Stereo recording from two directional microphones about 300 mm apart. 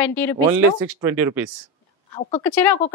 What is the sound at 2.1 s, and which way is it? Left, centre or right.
Speech, centre.